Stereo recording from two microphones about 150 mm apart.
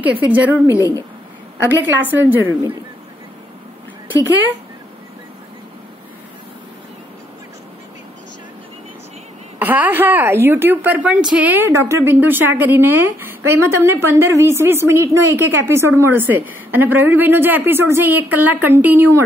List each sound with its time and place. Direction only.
0.0 s a woman's voice: 10° right (ahead or behind)
0.7 s a woman's voice: 20° left (ahead or behind)
1.6 s a woman's voice: 10° right (ahead or behind)
9.6 s a woman's voice: 10° right (ahead or behind)